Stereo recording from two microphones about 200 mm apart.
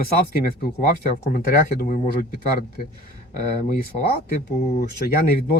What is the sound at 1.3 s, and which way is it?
Speech, 45° left (ahead or behind).